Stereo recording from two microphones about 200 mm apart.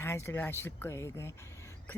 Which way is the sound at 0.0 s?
10° left (ahead or behind).